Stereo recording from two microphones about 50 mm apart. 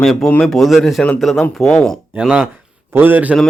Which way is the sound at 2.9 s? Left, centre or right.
Right.